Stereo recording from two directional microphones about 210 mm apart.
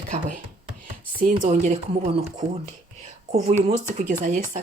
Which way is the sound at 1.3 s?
35° right (ahead or behind).